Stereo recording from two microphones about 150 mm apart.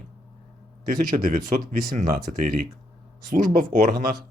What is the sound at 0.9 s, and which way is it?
Speech, 70° right (ahead or behind).